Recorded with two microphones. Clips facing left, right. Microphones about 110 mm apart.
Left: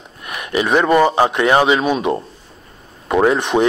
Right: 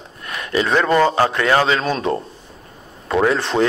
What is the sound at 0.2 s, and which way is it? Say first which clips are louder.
Speech: left 1 dB; 15° left (ahead or behind).